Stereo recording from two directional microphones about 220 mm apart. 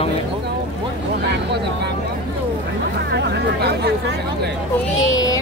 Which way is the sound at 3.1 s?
50° right (ahead or behind).